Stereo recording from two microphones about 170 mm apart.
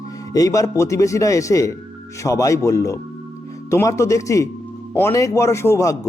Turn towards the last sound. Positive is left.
turn(degrees=20)  # may be behind; listen again after turning